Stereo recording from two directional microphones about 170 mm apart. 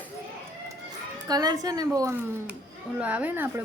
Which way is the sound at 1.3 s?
20° right (ahead or behind).